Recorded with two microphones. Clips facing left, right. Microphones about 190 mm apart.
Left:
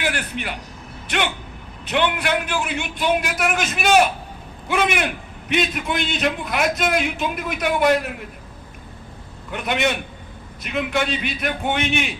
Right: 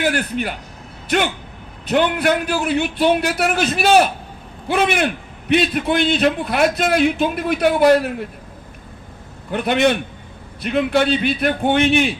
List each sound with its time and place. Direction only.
0.0 s a man's voice: 40° right (ahead or behind)
9.5 s a man's voice: 35° right (ahead or behind)